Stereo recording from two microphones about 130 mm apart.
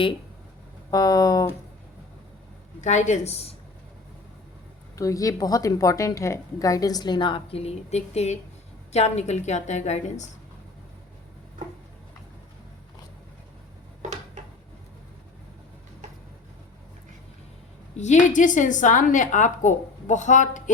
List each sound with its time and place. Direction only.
0.9 s a woman's voice: 30° left (ahead or behind)
2.8 s a woman's voice: 65° left (ahead or behind)
4.9 s a woman's voice: 25° left (ahead or behind); by 10.3 s 65° left (ahead or behind)
17.9 s a woman's voice: 65° left (ahead or behind)